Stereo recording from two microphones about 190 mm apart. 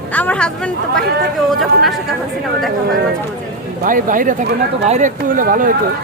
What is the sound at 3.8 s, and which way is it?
Speech, 45° right (ahead or behind).